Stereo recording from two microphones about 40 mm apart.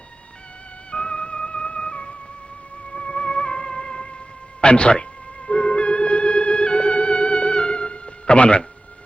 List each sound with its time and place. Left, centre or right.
0.9 s music: left
4.6 s speech: left
5.5 s music: left